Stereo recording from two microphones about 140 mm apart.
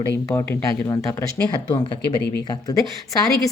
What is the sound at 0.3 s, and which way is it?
A woman's voice, 20° left (ahead or behind).